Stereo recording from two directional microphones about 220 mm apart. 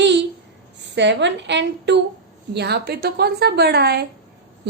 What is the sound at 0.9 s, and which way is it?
A woman's voice, 55° right (ahead or behind).